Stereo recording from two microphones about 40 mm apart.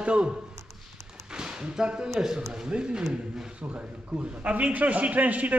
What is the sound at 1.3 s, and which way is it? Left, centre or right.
A woman's voice, centre.